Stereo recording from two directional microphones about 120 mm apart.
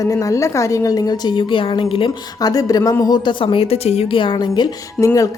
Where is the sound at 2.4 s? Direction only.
30° left (ahead or behind).